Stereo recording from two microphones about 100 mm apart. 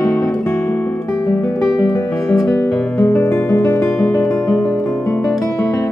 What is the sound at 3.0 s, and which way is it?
Music, 25° left (ahead or behind).